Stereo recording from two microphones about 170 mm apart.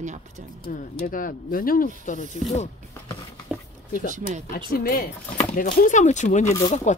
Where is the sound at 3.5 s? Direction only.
5° right (ahead or behind).